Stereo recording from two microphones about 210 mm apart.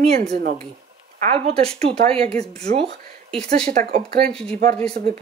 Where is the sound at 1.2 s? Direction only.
30° right (ahead or behind).